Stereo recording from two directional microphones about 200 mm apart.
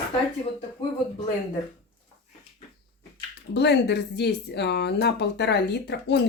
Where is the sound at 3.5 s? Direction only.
60° left (ahead or behind).